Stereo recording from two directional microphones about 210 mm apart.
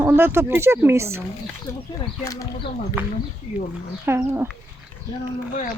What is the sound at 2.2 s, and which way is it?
Speech, 15° left (ahead or behind).